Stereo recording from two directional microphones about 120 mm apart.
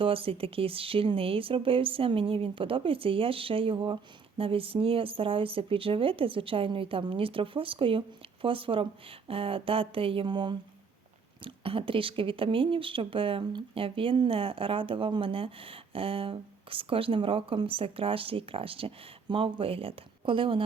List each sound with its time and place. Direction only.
0.0 s speech: 50° right (ahead or behind)
11.4 s speech: 50° right (ahead or behind)